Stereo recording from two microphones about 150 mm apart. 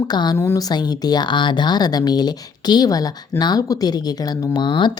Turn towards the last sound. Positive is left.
turn(degrees=30)  # may be behind; listen again after turning